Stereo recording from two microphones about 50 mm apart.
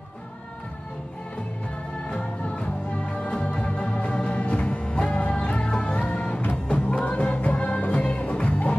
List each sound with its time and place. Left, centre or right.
2.0 s music: left